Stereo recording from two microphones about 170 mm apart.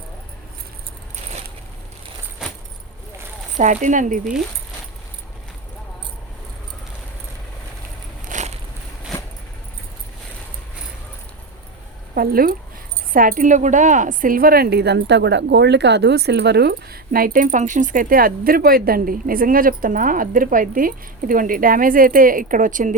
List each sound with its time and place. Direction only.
2.4 s keys jangling: 5° right (ahead or behind)
3.6 s speech: 45° right (ahead or behind)
8.3 s a sound: 45° right (ahead or behind)
12.1 s a woman's voice: 60° right (ahead or behind)